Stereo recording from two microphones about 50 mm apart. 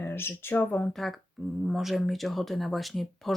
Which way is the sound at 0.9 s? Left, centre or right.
Centre.